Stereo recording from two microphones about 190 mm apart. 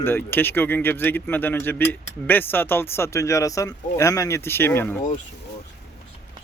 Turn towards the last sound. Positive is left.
turn(degrees=10)  # may be behind; listen again after turning